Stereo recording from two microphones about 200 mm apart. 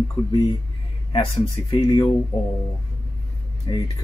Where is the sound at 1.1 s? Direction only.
25° left (ahead or behind).